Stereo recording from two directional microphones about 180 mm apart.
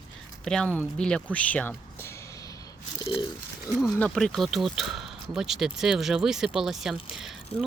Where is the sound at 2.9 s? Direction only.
25° left (ahead or behind).